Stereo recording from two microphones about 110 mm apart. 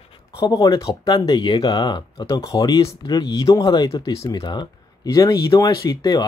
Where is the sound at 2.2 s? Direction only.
30° left (ahead or behind).